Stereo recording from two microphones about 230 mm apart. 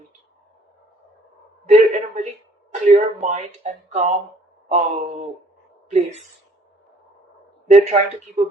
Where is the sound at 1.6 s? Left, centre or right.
Right.